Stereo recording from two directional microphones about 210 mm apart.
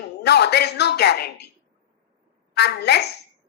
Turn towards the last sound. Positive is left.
turn(degrees=50)  # may be behind; listen again after turning